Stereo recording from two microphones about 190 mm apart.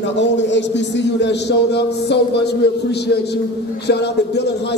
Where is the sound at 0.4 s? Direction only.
70° left (ahead or behind).